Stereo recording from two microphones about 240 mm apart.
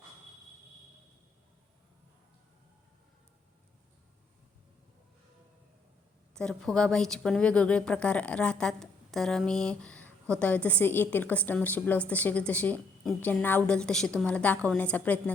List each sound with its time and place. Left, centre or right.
6.3 s a woman's voice: centre